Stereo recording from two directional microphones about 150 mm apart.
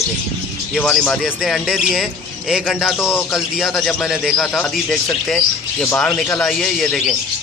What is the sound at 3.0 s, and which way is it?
Speech, 15° left (ahead or behind).